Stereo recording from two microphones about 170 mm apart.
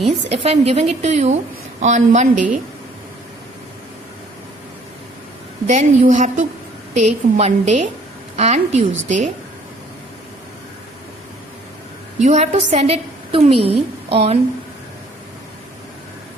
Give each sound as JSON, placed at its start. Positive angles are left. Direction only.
{"t": 0.0, "sound": "a woman's voice", "side_deg": -35}
{"t": 5.6, "sound": "a woman's voice", "side_deg": -45}
{"t": 12.2, "sound": "a woman's voice", "side_deg": -45}